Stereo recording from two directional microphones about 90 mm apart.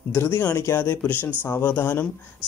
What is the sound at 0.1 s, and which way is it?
Speech, 30° left (ahead or behind).